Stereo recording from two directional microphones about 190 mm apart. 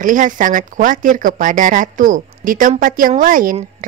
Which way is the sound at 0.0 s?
45° right (ahead or behind).